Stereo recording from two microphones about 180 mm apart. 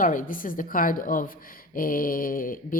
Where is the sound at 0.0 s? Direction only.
45° left (ahead or behind).